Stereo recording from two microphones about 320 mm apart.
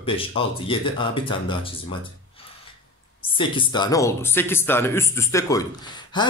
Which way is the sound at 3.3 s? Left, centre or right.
Centre.